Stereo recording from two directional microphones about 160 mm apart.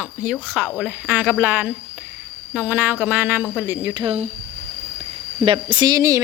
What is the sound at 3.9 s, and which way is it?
Speech, 30° right (ahead or behind).